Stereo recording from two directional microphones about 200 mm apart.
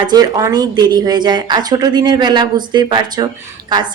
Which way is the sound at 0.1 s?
20° right (ahead or behind).